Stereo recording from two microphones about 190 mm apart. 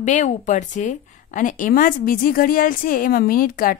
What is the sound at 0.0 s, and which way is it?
A woman's voice, 40° left (ahead or behind).